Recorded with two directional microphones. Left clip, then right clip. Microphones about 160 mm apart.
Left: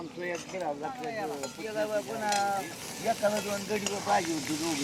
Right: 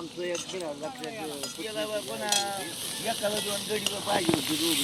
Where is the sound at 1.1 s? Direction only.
40° left (ahead or behind); by 3.9 s 55° left (ahead or behind).